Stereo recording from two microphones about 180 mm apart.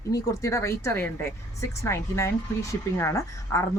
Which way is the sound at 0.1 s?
20° left (ahead or behind).